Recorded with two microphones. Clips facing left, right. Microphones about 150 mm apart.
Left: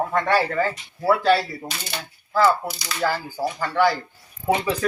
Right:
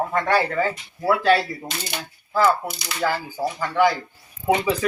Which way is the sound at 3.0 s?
Centre (ahead or behind).